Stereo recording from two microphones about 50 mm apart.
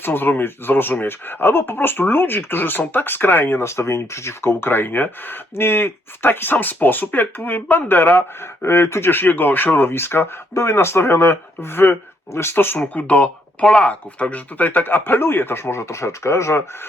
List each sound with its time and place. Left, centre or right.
0.0 s speech: left
12.3 s speech: left
12.9 s speech: left
13.7 s speech: centre; by 16.6 s left